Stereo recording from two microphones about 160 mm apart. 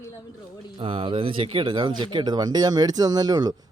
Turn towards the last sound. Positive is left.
turn(degrees=-25)  # may be behind; listen again after turning